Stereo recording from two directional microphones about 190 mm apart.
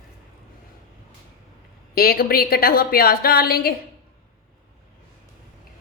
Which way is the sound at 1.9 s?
55° left (ahead or behind).